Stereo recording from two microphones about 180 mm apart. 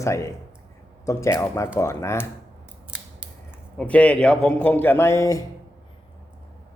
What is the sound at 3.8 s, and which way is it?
A man's voice, 5° left (ahead or behind).